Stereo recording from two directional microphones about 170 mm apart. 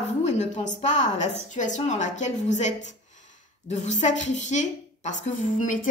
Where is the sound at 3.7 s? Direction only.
45° left (ahead or behind).